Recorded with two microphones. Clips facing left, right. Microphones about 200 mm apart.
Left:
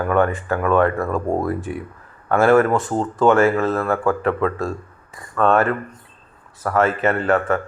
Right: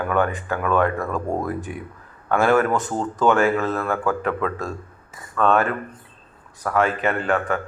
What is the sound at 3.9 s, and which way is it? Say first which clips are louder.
Speech: left 3 dB; 30° left (ahead or behind).